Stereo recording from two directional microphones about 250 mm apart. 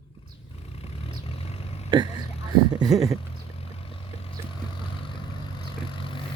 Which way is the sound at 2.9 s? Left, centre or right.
Centre.